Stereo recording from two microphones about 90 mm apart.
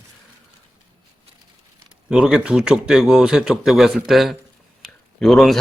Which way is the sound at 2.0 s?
5° right (ahead or behind).